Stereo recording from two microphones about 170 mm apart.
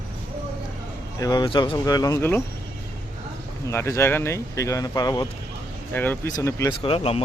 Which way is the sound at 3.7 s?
15° left (ahead or behind).